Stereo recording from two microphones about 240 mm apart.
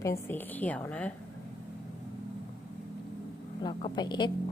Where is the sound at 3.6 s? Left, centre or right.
Centre.